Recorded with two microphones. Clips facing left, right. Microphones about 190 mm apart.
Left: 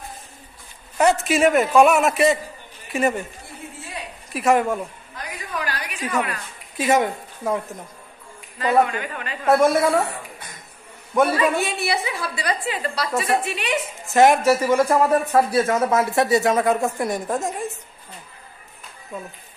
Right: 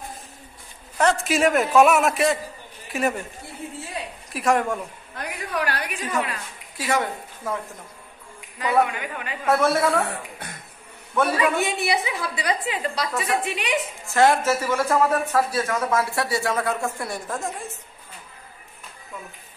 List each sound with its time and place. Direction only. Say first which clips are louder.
0.9 s a man's voice: left 3 dB; 5° left (ahead or behind)
4.3 s a man's voice: left 3 dB; centre (ahead or behind)
5.1 s a sound: right 4 dB; 60° right (ahead or behind)
6.8 s a woman's voice: left 5 dB; 20° left (ahead or behind)
8.5 s a woman's voice: left 3 dB; 10° right (ahead or behind)
9.5 s a man's voice: left 3 dB; 10° left (ahead or behind)
10.0 s a sound: right 1 dB; 65° right (ahead or behind)
11.3 s a woman's voice: left 1 dB; 15° right (ahead or behind)
14.0 s a man's voice: left 4 dB; 20° left (ahead or behind)